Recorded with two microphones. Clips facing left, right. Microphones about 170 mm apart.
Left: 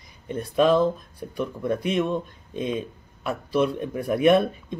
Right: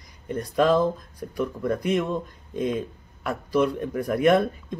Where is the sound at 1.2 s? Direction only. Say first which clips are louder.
Right 1 dB; 5° left (ahead or behind).